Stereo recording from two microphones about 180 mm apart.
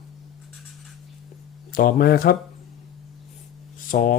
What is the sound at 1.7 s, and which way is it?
Speech, 50° left (ahead or behind).